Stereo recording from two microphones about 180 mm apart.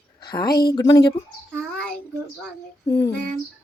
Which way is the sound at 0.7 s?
20° left (ahead or behind).